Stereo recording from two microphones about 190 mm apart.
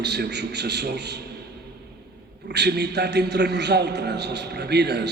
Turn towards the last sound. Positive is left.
turn(degrees=-60)  # may be behind; listen again after turning